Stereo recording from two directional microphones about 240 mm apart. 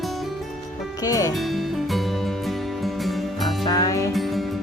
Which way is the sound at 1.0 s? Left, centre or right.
Centre.